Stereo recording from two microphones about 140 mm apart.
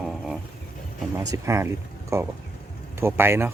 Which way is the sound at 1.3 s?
20° right (ahead or behind).